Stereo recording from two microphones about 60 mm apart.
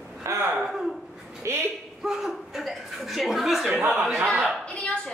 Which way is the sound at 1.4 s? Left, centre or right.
Right.